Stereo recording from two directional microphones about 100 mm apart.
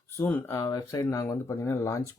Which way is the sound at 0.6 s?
35° left (ahead or behind).